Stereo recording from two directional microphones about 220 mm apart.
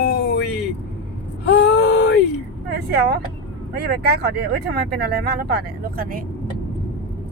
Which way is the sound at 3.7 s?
45° right (ahead or behind).